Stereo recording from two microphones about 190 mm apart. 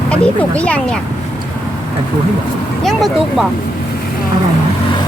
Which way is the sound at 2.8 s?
Centre (ahead or behind).